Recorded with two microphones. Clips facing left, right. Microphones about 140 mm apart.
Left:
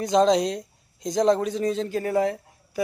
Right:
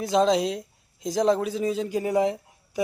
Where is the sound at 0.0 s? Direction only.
5° right (ahead or behind).